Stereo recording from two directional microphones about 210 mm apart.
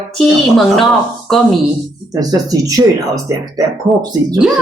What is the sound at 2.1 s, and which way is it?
Speech, 15° right (ahead or behind).